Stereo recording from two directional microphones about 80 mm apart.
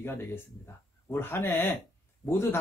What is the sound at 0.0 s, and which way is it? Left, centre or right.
Speech, left.